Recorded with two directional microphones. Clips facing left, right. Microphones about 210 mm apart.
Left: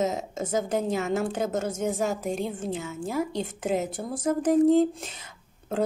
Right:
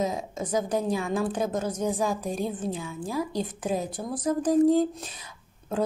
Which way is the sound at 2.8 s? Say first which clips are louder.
Left 1 dB; 45° left (ahead or behind).